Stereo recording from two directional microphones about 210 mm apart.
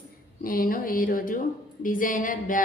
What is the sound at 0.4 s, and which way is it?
A woman's voice, 45° left (ahead or behind).